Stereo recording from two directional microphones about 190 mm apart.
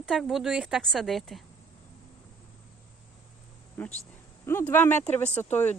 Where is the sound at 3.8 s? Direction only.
10° left (ahead or behind).